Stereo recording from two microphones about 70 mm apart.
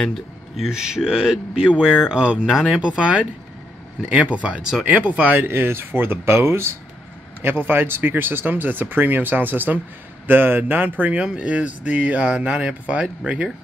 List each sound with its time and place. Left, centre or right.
0.0 s speech: centre
0.7 s speech: centre